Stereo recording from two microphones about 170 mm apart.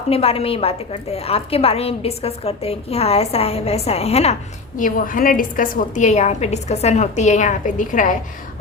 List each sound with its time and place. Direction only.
0.1 s a woman's voice: 35° left (ahead or behind)
4.8 s a woman's voice: 55° left (ahead or behind)